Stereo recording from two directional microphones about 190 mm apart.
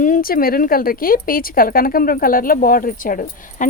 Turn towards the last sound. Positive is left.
turn(degrees=45)  # may be behind; listen again after turning